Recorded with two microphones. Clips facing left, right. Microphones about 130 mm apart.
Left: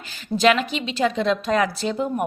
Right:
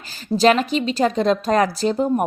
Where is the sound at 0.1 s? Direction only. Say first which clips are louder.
Right 3 dB; 35° right (ahead or behind).